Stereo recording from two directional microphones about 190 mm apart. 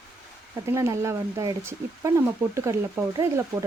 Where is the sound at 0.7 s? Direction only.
15° right (ahead or behind).